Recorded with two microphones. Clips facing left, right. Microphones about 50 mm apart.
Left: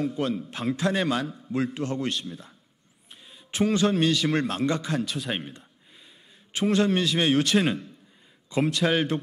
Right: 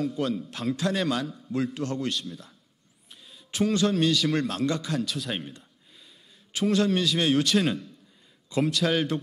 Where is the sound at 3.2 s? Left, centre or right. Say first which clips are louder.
Left 1 dB; centre.